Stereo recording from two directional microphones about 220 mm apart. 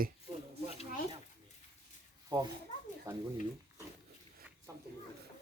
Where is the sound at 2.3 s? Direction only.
20° right (ahead or behind).